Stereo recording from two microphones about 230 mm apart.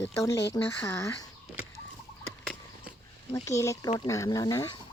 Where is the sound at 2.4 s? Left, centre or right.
Centre.